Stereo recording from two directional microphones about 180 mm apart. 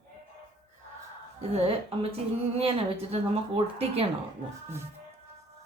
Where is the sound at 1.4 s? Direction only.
35° right (ahead or behind).